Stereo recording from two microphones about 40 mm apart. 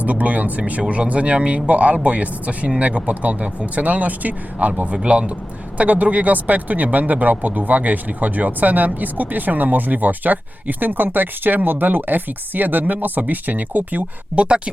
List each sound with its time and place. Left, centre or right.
0.0 s speech: right
5.0 s speech: right
5.7 s speech: right
14.3 s speech: right